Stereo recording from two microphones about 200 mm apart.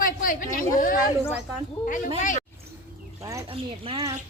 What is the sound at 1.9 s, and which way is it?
Speech, 40° left (ahead or behind).